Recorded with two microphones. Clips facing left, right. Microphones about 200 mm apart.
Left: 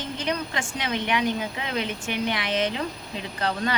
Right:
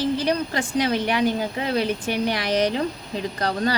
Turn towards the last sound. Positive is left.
turn(degrees=-35)  # may be behind; listen again after turning